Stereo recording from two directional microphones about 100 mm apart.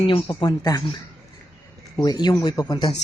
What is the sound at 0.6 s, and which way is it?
Speech, 40° left (ahead or behind).